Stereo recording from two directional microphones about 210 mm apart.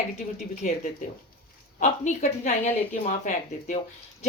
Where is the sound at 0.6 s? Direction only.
40° left (ahead or behind).